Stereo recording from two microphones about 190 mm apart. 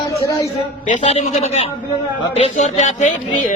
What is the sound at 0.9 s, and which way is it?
Speech, 35° left (ahead or behind).